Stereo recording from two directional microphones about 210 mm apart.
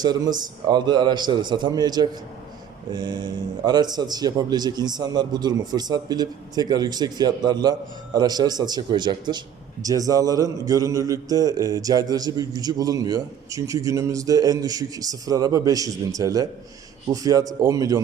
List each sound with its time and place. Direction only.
0.0 s a man's voice: 20° right (ahead or behind)